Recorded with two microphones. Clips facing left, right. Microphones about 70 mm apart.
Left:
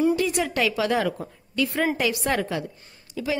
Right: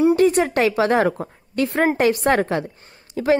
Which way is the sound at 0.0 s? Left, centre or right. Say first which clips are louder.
Right 7 dB; right.